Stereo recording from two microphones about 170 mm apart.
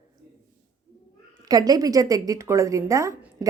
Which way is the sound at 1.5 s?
20° right (ahead or behind).